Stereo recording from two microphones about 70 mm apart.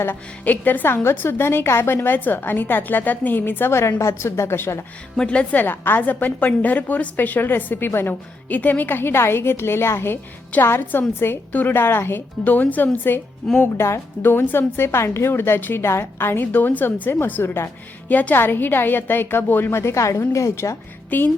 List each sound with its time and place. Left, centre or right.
0.0 s a woman's voice: left
5.1 s a woman's voice: centre
5.5 s a woman's voice: left
12.5 s a woman's voice: left
13.7 s a woman's voice: left
14.3 s a woman's voice: left
18.1 s a woman's voice: left
21.1 s a woman's voice: left